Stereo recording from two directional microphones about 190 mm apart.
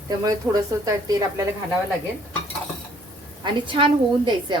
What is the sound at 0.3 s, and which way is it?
Speech, 20° right (ahead or behind).